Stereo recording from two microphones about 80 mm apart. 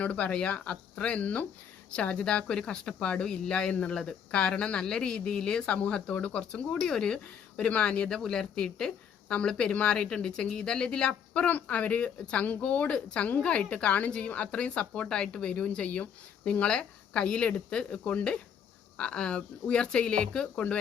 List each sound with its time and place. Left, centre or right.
0.0 s speech: centre